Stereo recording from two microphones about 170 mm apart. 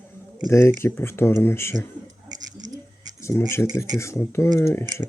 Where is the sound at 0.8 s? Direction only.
15° left (ahead or behind).